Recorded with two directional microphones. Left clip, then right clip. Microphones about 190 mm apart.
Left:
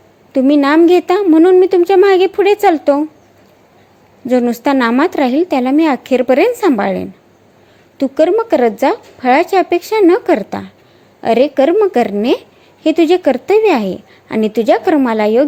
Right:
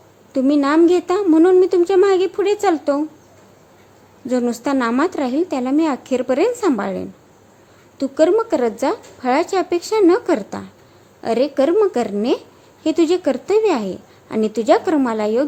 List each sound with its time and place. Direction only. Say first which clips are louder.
0.3 s a woman's voice: left 5 dB; 15° left (ahead or behind)
4.3 s a woman's voice: left 7 dB; 15° left (ahead or behind)